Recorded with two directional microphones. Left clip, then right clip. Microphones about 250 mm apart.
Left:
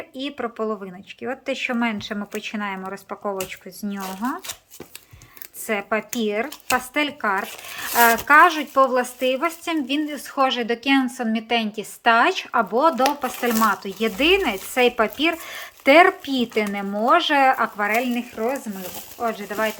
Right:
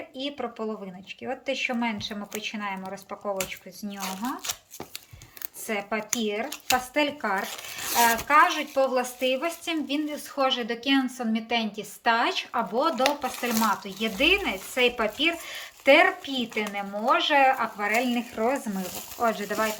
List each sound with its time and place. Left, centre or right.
0.2 s a woman's voice: centre
5.6 s a woman's voice: centre
7.9 s a woman's voice: centre